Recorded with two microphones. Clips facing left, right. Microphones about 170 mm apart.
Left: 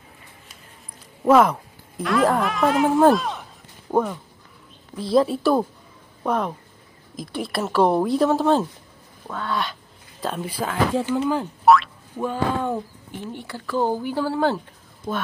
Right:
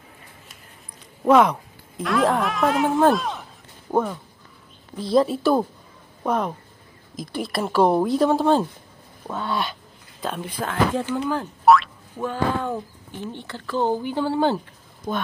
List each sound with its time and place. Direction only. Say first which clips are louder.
1.2 s speech: even; centre (ahead or behind)
9.3 s speech: right 1 dB; 20° right (ahead or behind)
10.2 s speech: left 1 dB; 5° left (ahead or behind)
11.6 s boing: even; centre (ahead or behind)
13.3 s speech: left 2 dB; 10° left (ahead or behind)